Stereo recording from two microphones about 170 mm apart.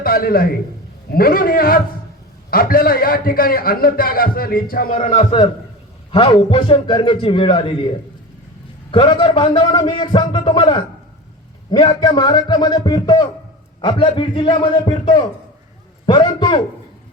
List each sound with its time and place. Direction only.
0.0 s a man's voice: 60° left (ahead or behind)
5.1 s a man's voice: 30° left (ahead or behind)
8.9 s a man's voice: 30° left (ahead or behind)